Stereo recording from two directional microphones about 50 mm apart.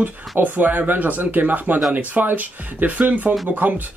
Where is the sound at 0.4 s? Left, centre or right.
Right.